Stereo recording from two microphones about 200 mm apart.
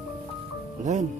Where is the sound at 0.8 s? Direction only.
40° right (ahead or behind).